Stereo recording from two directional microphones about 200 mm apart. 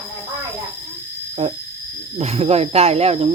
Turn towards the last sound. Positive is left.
turn(degrees=-30)  # may be behind; listen again after turning